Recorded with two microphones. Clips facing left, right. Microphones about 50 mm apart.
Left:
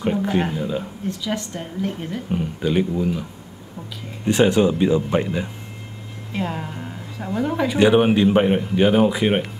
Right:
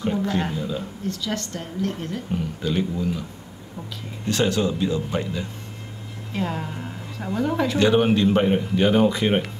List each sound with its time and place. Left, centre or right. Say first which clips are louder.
0.0 s speech: left 3 dB; centre
4.3 s speech: left 6 dB; left
6.3 s speech: left 1 dB; centre